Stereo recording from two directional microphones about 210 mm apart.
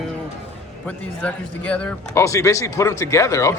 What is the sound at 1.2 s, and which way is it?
Speech, 5° left (ahead or behind).